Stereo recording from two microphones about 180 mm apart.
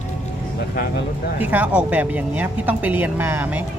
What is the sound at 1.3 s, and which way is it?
Speech, 10° right (ahead or behind).